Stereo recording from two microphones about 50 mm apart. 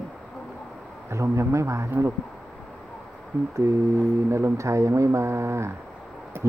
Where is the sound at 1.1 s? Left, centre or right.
Right.